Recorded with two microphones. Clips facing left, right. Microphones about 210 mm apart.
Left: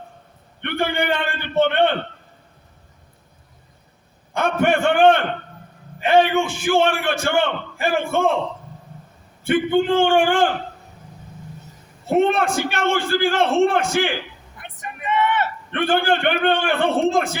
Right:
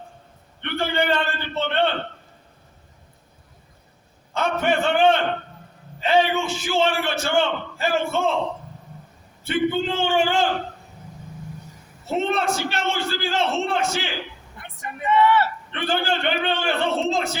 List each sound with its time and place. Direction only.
0.6 s a sound: 55° left (ahead or behind)
1.1 s a man's voice: 55° left (ahead or behind)
4.4 s a man's voice: 55° left (ahead or behind)
9.5 s a man's voice: 55° left (ahead or behind)
12.0 s a man's voice: 55° left (ahead or behind)
14.6 s a sound: 20° left (ahead or behind)
15.7 s a man's voice: 55° left (ahead or behind)